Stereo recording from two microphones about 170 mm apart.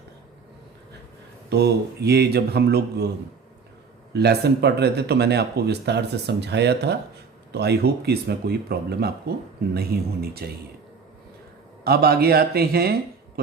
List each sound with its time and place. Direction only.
1.5 s speech: 75° right (ahead or behind)
4.1 s speech: 75° right (ahead or behind)
7.5 s speech: 70° right (ahead or behind)
10.4 s speech: 65° right (ahead or behind)
11.9 s speech: 65° right (ahead or behind)